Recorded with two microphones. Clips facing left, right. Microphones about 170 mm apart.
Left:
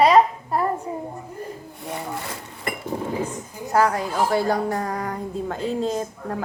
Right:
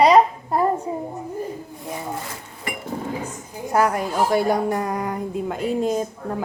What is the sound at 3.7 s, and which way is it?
A woman's voice, 15° right (ahead or behind).